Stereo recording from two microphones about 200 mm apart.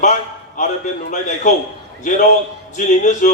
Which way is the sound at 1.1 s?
35° left (ahead or behind).